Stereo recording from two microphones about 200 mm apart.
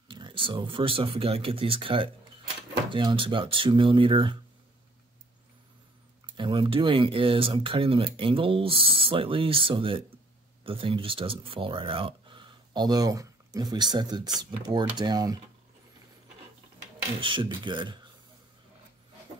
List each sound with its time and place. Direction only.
0.1 s speech: 25° right (ahead or behind)
6.3 s speech: 25° right (ahead or behind)
17.2 s speech: 25° right (ahead or behind)